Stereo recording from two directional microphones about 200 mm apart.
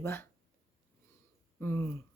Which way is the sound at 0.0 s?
10° left (ahead or behind).